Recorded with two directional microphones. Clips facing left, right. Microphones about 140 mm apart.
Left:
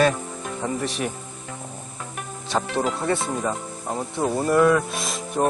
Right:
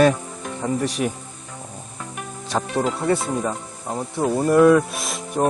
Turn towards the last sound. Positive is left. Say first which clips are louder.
# right 4 dB
turn(degrees=0)  # may be behind; listen again after turning